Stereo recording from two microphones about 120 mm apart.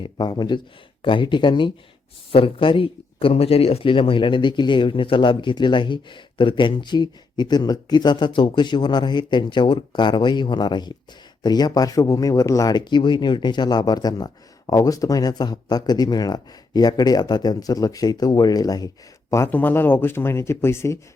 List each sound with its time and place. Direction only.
0.0 s speech: 35° left (ahead or behind)
19.3 s speech: 20° left (ahead or behind)